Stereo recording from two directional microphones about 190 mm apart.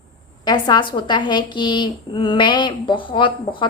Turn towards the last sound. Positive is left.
turn(degrees=25)  # may be behind; listen again after turning